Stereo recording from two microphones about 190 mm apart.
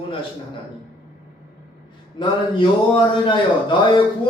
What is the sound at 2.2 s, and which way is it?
Speech, 25° left (ahead or behind).